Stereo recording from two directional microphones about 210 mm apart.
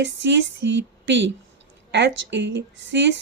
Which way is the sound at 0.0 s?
55° right (ahead or behind).